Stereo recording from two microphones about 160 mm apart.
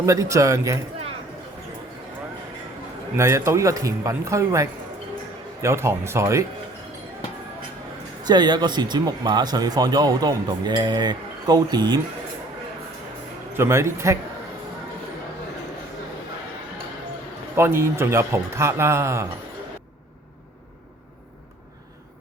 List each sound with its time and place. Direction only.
0.0 s speech: 20° right (ahead or behind)
3.2 s a man's voice: 20° right (ahead or behind)
8.2 s speech: 25° right (ahead or behind)
13.6 s a man's voice: 15° right (ahead or behind)
17.6 s a man's voice: 15° right (ahead or behind)